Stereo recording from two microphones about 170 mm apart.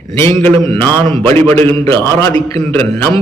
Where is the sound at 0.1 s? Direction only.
15° left (ahead or behind).